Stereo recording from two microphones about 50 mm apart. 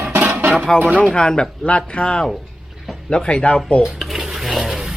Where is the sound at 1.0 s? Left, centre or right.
Centre.